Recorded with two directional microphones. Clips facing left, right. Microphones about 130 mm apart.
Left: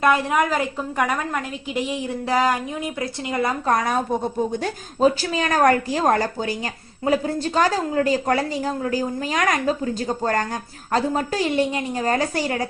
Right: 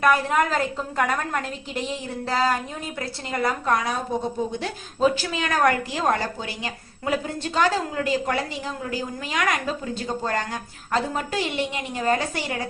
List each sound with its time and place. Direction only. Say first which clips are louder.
0.3 s a woman's voice: left 1 dB; 10° left (ahead or behind)
3.7 s a woman's voice: left 3 dB; 45° left (ahead or behind)